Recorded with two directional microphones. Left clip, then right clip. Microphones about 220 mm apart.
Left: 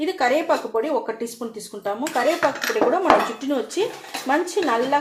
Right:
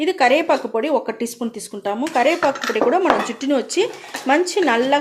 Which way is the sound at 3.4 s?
40° right (ahead or behind).